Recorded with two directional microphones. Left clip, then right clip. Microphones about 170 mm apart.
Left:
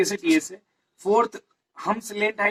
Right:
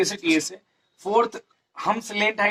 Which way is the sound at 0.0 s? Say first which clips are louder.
Even; 25° right (ahead or behind).